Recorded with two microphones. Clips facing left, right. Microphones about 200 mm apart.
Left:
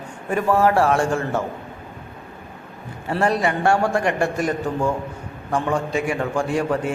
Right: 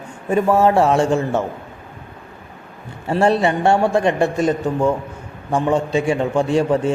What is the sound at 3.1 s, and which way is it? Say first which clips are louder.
A man's voice: right 4 dB; 25° right (ahead or behind).